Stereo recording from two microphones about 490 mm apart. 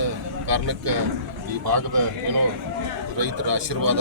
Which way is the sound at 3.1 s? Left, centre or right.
Right.